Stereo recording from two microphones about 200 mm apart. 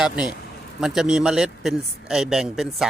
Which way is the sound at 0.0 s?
5° right (ahead or behind).